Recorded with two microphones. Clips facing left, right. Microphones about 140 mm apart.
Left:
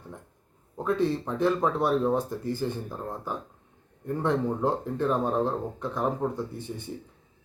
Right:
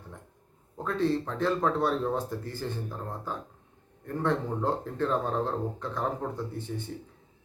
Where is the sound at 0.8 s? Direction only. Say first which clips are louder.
Left 2 dB; 15° left (ahead or behind).